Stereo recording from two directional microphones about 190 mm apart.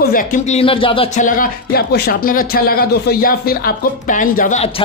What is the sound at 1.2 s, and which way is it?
Speech, 45° left (ahead or behind).